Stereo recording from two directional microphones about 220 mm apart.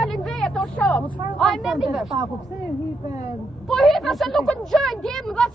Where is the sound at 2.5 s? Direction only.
15° right (ahead or behind).